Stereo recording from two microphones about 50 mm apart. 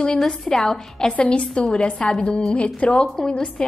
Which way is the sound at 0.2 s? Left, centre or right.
Centre.